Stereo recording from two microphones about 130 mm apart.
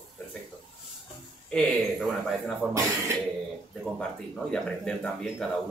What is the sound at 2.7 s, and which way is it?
Speech, 25° right (ahead or behind).